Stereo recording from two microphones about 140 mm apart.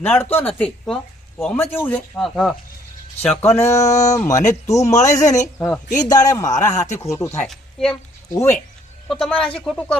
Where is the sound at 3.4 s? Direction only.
20° left (ahead or behind).